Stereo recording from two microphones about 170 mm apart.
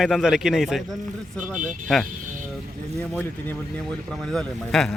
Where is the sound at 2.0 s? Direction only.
50° right (ahead or behind).